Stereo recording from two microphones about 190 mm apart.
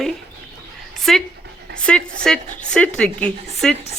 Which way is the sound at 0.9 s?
Centre (ahead or behind).